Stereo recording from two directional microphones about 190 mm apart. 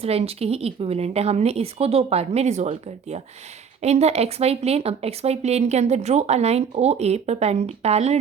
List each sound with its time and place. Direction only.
0.0 s speech: 30° right (ahead or behind)